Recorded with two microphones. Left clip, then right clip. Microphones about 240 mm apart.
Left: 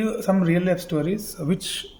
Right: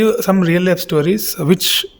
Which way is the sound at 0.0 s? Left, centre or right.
Right.